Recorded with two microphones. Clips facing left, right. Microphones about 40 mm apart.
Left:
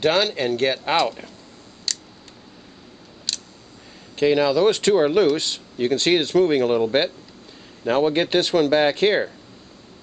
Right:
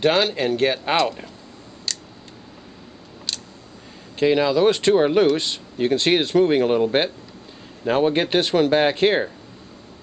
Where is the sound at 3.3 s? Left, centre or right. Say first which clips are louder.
Even; centre.